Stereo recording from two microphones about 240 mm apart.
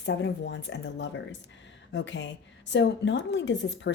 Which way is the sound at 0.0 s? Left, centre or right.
Left.